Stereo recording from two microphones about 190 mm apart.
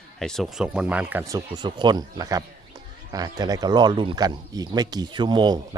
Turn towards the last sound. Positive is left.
turn(degrees=-25)  # may be behind; listen again after turning